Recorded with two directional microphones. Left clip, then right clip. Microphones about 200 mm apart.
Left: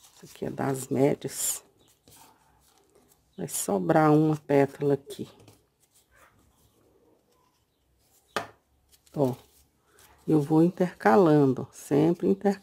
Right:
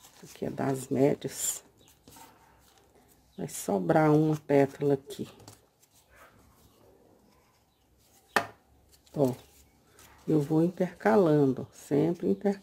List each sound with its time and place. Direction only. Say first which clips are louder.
0.4 s speech: left 1 dB; 15° left (ahead or behind)
3.3 s speech: left 2 dB; 20° left (ahead or behind)
10.2 s speech: left 4 dB; 25° left (ahead or behind)